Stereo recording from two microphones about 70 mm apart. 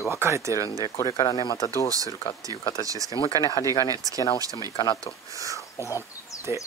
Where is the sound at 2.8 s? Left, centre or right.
Right.